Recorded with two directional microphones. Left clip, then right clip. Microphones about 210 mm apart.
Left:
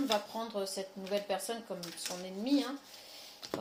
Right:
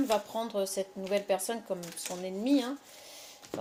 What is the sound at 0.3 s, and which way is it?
Speech, 50° right (ahead or behind).